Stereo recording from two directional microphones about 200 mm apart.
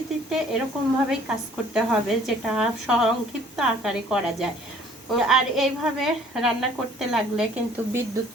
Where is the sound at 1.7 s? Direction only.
Centre (ahead or behind).